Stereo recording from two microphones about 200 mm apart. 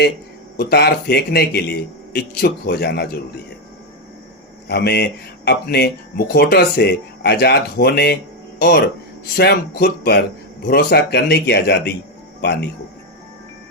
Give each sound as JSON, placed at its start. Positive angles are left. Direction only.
{"t": 0.5, "sound": "speech", "side_deg": 50}
{"t": 4.7, "sound": "speech", "side_deg": 55}
{"t": 9.4, "sound": "speech", "side_deg": 55}